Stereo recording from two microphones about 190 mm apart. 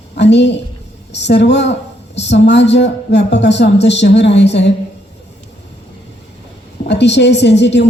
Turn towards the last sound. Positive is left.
turn(degrees=65)  # may be behind; listen again after turning